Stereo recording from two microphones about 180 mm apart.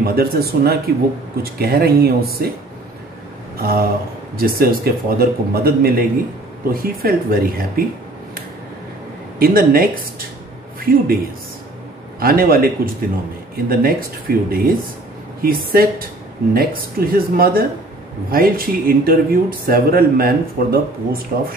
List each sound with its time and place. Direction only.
0.0 s speech: 55° right (ahead or behind)
3.5 s speech: 55° right (ahead or behind)
9.4 s speech: 55° right (ahead or behind)
12.2 s speech: 55° right (ahead or behind)